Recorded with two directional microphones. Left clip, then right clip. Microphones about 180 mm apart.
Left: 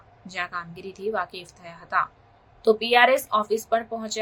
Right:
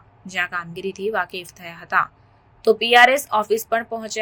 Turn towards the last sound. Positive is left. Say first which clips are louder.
# right 2 dB
turn(degrees=-15)  # may be behind; listen again after turning